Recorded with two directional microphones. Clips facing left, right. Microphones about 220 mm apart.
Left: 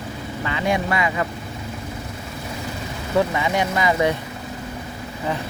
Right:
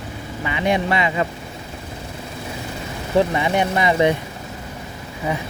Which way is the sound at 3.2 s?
20° right (ahead or behind).